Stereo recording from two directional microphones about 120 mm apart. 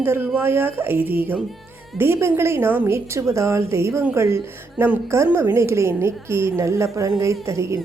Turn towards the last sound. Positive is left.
turn(degrees=-25)  # may be behind; listen again after turning